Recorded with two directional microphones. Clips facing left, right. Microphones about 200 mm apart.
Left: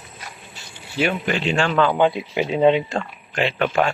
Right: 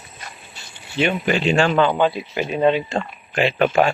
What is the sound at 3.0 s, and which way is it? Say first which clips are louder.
Speech: right 3 dB; 10° right (ahead or behind).